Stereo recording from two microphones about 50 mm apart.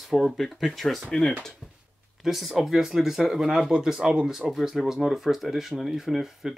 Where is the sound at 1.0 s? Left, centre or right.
Centre.